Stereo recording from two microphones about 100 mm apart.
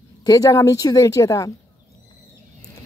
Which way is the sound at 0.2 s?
40° left (ahead or behind).